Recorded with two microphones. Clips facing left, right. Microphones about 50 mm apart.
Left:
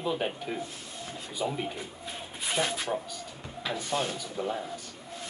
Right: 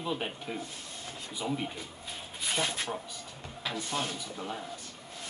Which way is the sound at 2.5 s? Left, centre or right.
Left.